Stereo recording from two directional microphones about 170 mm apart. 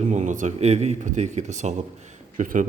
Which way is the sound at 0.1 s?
45° right (ahead or behind).